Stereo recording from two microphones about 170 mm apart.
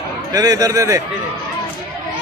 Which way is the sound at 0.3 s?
20° right (ahead or behind).